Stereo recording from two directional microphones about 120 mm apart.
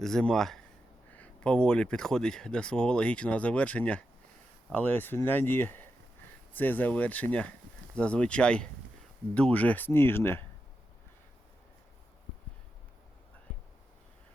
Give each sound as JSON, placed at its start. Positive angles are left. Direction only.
{"t": 0.0, "sound": "speech", "side_deg": 5}